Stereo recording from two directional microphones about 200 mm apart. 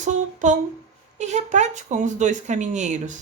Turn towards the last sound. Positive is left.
turn(degrees=-35)  # may be behind; listen again after turning